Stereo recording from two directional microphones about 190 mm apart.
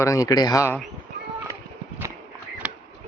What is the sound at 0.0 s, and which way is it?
Speech, 15° left (ahead or behind).